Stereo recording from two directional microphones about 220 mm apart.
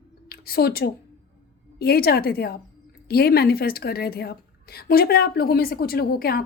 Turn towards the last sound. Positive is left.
turn(degrees=45)  # may be behind; listen again after turning